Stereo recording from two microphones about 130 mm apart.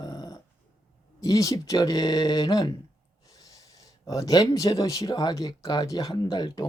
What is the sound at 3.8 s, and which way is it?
A man's voice, 25° left (ahead or behind).